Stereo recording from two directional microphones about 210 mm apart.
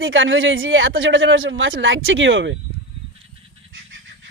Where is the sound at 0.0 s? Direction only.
65° right (ahead or behind).